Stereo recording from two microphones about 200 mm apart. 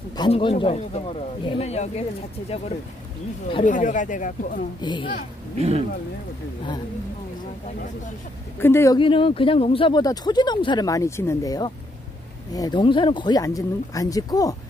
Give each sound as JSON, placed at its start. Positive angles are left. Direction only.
{"t": 0.1, "sound": "speech", "side_deg": 25}
{"t": 3.6, "sound": "speech", "side_deg": 40}
{"t": 4.8, "sound": "speech", "side_deg": 25}
{"t": 5.6, "sound": "speech", "side_deg": -30}
{"t": 8.5, "sound": "speech", "side_deg": 10}